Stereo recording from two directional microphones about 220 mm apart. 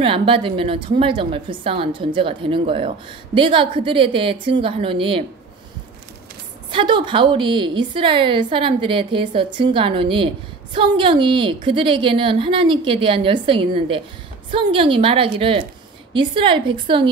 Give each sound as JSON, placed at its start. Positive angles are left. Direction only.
{"t": 0.0, "sound": "a woman's voice", "side_deg": -25}
{"t": 6.7, "sound": "a woman's voice", "side_deg": -20}